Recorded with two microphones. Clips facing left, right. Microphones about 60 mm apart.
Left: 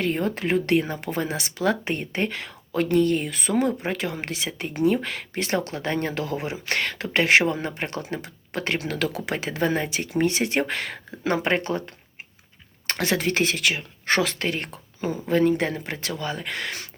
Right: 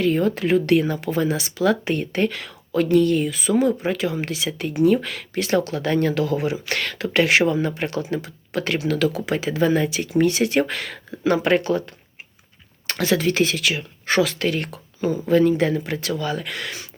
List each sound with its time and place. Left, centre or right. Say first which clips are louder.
0.0 s speech: right 5 dB; left
12.9 s speech: right 3 dB; left